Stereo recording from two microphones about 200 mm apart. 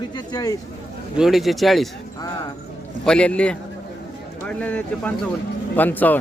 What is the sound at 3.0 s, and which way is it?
Speech, 5° left (ahead or behind).